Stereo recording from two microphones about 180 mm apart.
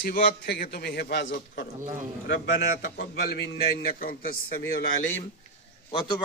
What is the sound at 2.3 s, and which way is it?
Speech, 70° left (ahead or behind).